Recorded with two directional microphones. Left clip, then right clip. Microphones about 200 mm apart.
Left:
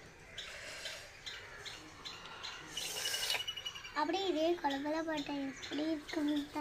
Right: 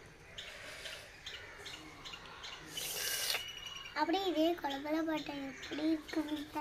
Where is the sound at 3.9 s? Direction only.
30° right (ahead or behind).